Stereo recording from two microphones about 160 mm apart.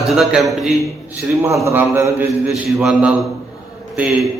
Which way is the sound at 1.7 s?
20° right (ahead or behind).